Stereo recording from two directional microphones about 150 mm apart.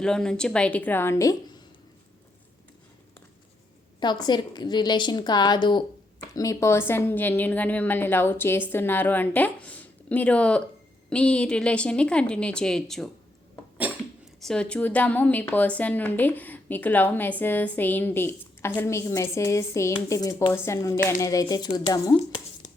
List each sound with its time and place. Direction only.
0.0 s a woman's voice: 5° left (ahead or behind); by 1.6 s 25° left (ahead or behind)
4.0 s a woman's voice: 30° left (ahead or behind); by 13.1 s 5° left (ahead or behind)
14.4 s a woman's voice: 5° left (ahead or behind); by 22.2 s 25° left (ahead or behind)